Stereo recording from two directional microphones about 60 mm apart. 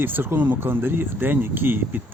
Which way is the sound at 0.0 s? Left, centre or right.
Right.